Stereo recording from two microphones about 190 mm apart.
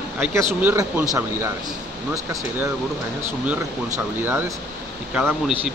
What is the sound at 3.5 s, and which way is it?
Speech, 10° right (ahead or behind).